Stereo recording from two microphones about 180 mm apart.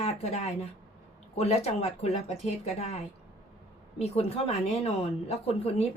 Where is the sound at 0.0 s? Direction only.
35° left (ahead or behind).